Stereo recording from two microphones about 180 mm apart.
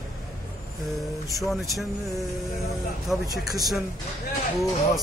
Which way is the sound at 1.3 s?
Centre (ahead or behind).